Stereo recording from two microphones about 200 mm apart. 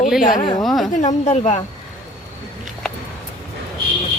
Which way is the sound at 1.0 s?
35° left (ahead or behind).